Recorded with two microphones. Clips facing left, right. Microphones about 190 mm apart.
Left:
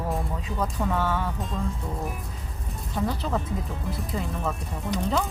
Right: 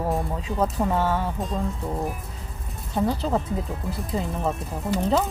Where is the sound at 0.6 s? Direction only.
30° right (ahead or behind).